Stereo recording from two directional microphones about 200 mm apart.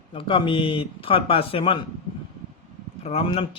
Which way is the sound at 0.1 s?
25° left (ahead or behind).